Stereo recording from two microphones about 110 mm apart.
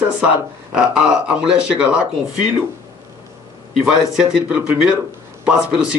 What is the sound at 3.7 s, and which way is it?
Speech, 5° right (ahead or behind).